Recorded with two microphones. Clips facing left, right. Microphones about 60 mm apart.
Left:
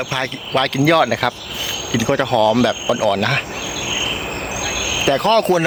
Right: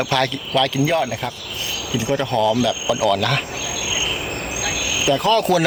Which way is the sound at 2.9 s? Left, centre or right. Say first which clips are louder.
Left 2 dB; left.